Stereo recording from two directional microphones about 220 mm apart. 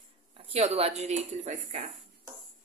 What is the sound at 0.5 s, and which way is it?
Speech, 30° right (ahead or behind).